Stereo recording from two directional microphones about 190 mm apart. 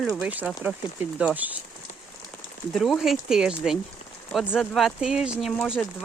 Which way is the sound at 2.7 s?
Centre (ahead or behind).